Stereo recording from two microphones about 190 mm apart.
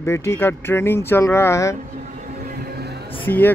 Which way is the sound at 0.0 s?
15° left (ahead or behind).